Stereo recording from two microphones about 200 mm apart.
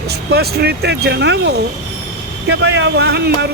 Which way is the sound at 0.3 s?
55° right (ahead or behind).